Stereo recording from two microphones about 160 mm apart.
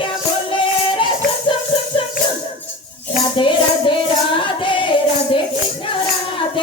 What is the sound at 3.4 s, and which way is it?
Music, 30° left (ahead or behind).